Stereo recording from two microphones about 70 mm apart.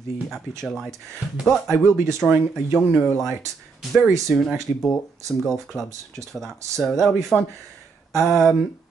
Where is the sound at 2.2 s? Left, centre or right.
Centre.